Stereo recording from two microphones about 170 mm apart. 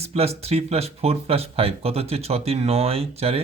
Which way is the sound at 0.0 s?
35° right (ahead or behind).